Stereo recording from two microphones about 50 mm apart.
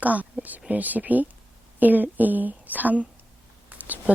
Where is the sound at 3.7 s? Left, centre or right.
Right.